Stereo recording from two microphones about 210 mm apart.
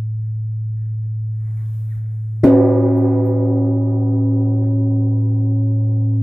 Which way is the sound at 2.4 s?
Centre (ahead or behind).